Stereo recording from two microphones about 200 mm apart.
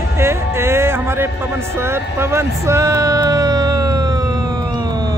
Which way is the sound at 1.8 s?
10° right (ahead or behind).